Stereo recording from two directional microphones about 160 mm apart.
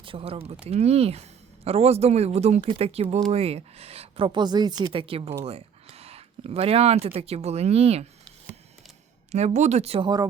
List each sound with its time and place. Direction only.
0.0 s speech: 35° right (ahead or behind)
9.3 s speech: 45° right (ahead or behind)